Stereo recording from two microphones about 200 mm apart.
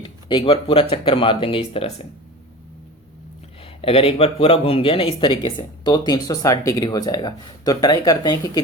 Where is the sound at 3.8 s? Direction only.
30° left (ahead or behind).